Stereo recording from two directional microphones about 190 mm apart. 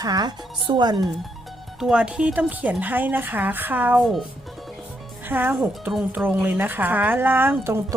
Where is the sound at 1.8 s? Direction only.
5° right (ahead or behind).